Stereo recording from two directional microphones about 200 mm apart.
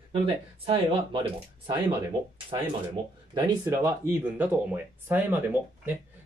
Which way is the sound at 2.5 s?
20° right (ahead or behind).